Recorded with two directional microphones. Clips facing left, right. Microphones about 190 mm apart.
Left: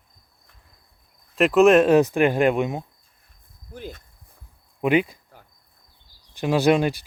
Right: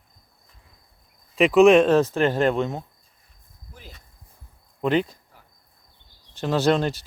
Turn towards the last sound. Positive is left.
turn(degrees=10)  # may be behind; listen again after turning